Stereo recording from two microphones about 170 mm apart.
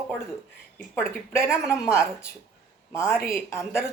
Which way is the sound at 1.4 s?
5° right (ahead or behind).